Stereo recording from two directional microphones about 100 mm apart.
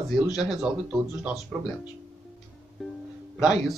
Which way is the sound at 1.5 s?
Centre (ahead or behind).